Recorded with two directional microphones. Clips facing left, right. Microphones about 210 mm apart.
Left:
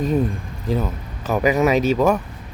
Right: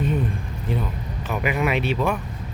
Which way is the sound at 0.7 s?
40° left (ahead or behind).